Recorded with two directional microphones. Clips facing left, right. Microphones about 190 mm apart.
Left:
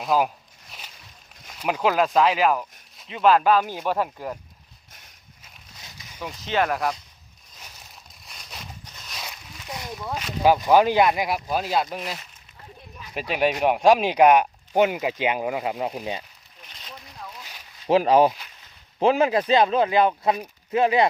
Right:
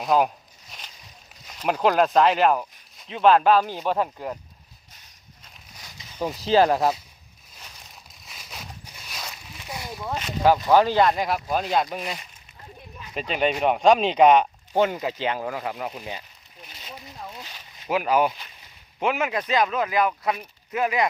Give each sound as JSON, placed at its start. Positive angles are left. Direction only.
{"t": 0.0, "sound": "speech", "side_deg": 0}
{"t": 1.5, "sound": "speech", "side_deg": 5}
{"t": 3.9, "sound": "speech", "side_deg": -15}
{"t": 6.1, "sound": "speech", "side_deg": -35}
{"t": 8.3, "sound": "a sound", "side_deg": 0}
{"t": 10.4, "sound": "speech", "side_deg": 15}
{"t": 16.6, "sound": "a sound", "side_deg": -5}
{"t": 17.8, "sound": "speech", "side_deg": 30}